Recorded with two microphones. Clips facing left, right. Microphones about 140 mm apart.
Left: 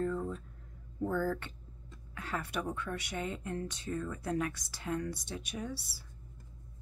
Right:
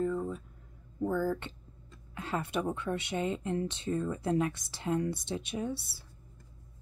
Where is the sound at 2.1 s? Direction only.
25° right (ahead or behind).